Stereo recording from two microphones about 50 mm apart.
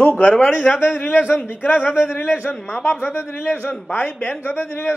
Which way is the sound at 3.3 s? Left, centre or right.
Left.